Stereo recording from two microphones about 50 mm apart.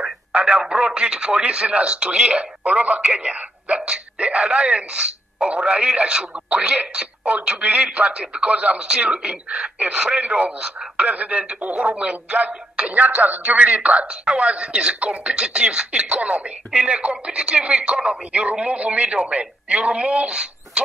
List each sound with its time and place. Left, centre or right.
0.3 s speech: right